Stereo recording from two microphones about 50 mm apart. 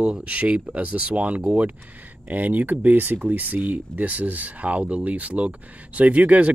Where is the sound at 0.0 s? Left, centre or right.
Right.